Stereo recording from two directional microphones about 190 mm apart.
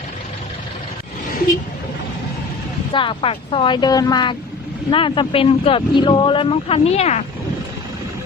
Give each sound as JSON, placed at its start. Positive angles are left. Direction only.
{"t": 2.9, "sound": "speech", "side_deg": 25}